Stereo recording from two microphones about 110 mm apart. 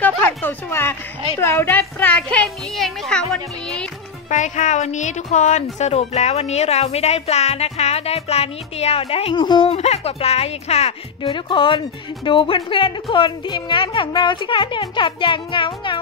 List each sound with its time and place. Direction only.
0.0 s a child's voice: 15° left (ahead or behind)
4.3 s speech: 90° left; by 9.8 s 50° left (ahead or behind)
9.8 s speech: 75° left (ahead or behind)
11.3 s a woman's voice: 45° left (ahead or behind)